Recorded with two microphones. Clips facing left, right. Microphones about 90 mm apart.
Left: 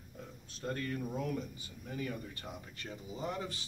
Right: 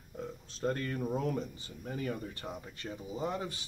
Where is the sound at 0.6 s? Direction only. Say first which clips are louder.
Right 4 dB; 35° right (ahead or behind).